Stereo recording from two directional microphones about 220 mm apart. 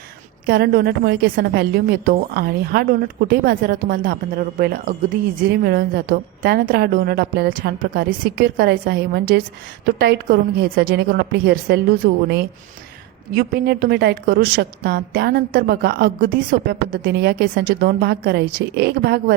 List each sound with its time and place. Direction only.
0.4 s a woman's voice: 45° right (ahead or behind)
13.3 s a woman's voice: 45° right (ahead or behind)